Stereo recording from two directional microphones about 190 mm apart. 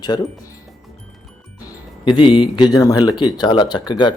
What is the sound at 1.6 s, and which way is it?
Speech, 25° left (ahead or behind).